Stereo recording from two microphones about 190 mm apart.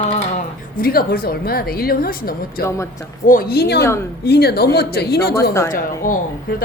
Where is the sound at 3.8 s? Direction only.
15° left (ahead or behind).